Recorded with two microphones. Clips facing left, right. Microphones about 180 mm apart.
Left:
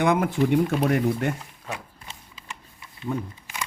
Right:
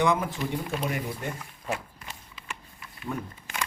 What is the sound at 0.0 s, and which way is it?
Speech, 60° left (ahead or behind).